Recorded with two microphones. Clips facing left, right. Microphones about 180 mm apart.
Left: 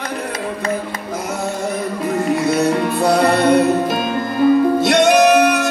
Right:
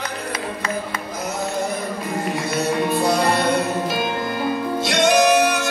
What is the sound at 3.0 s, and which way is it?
Music, 60° left (ahead or behind).